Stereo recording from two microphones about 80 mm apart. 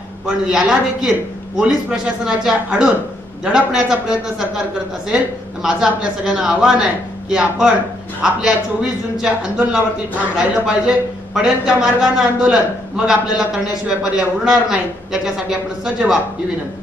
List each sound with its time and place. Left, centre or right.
0.3 s a man's voice: centre
10.3 s a man's voice: centre